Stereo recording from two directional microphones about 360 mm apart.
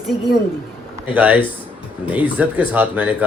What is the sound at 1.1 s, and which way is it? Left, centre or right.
Speech, centre.